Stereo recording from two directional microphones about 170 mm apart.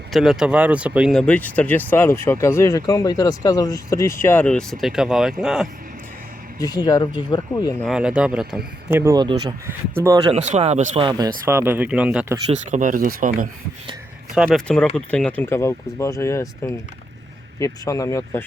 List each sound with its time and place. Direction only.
0.1 s speech: centre (ahead or behind)
1.2 s speech: 10° left (ahead or behind)
6.6 s speech: 25° left (ahead or behind)
7.8 s speech: 5° right (ahead or behind)
8.9 s a man's voice: 20° right (ahead or behind)
10.3 s speech: 40° right (ahead or behind)
11.1 s speech: 20° right (ahead or behind)
12.5 s speech: 50° right (ahead or behind)
14.3 s speech: 5° right (ahead or behind)
14.9 s speech: 5° left (ahead or behind)